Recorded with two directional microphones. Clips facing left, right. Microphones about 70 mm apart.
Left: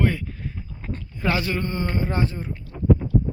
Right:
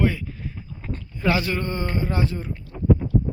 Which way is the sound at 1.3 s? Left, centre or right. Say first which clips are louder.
Right 2 dB; centre.